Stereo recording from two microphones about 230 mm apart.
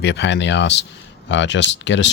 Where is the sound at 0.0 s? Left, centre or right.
Left.